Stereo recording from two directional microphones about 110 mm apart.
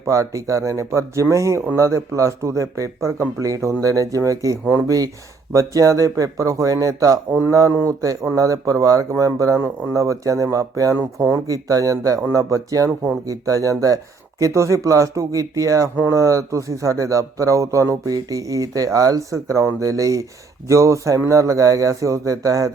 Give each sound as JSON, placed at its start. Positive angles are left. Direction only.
{"t": 0.0, "sound": "speech", "side_deg": -30}
{"t": 10.9, "sound": "speech", "side_deg": -20}
{"t": 11.4, "sound": "speech", "side_deg": -30}